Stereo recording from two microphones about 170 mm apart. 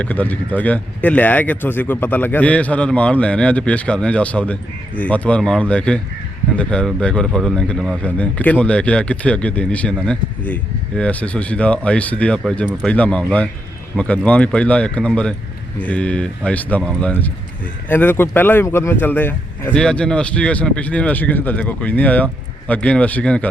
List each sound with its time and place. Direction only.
0.0 s speech: 10° left (ahead or behind)